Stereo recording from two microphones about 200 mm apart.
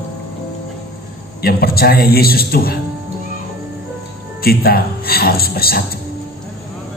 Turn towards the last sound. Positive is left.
turn(degrees=50)  # may be behind; listen again after turning